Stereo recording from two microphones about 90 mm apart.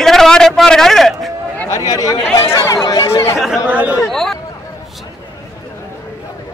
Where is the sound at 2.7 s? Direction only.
50° left (ahead or behind).